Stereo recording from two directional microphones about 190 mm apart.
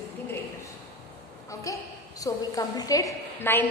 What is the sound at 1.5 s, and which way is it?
A woman's voice, 15° left (ahead or behind).